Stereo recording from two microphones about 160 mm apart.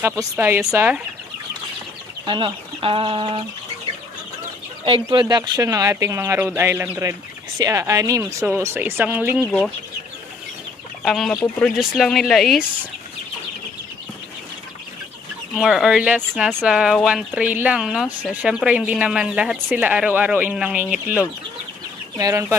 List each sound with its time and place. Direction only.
0.0 s speech: 15° right (ahead or behind)
2.2 s speech: 30° right (ahead or behind)
4.8 s speech: 30° right (ahead or behind); by 9.4 s 10° right (ahead or behind)
9.4 s speech: centre (ahead or behind)
11.1 s speech: centre (ahead or behind)
15.5 s speech: centre (ahead or behind)
22.1 s speech: 20° right (ahead or behind)